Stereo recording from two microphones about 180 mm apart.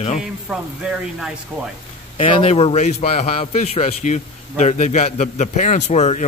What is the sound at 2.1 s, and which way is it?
A man's voice, 35° left (ahead or behind).